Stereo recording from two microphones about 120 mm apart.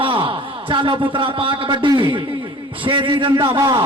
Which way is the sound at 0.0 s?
45° right (ahead or behind).